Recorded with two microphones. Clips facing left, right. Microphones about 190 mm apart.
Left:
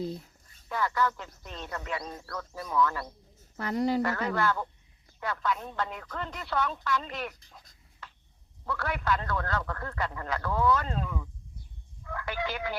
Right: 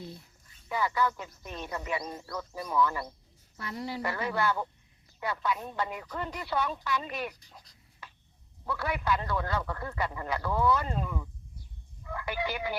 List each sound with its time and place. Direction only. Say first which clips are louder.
0.7 s speech: even; 10° right (ahead or behind)
3.6 s speech: left 9 dB; 50° left (ahead or behind)
4.0 s speech: left 2 dB; 5° right (ahead or behind)
8.6 s speech: even; 5° right (ahead or behind)